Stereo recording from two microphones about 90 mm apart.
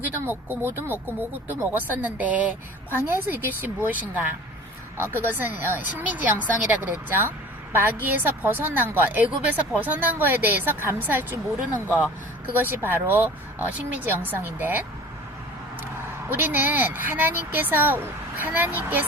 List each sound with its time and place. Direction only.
0.0 s speech: 20° right (ahead or behind)
16.3 s speech: 25° right (ahead or behind)